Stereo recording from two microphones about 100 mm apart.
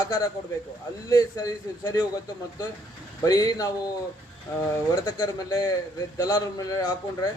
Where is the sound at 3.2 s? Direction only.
35° left (ahead or behind).